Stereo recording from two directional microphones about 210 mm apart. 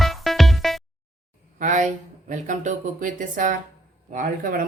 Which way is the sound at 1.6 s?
35° right (ahead or behind).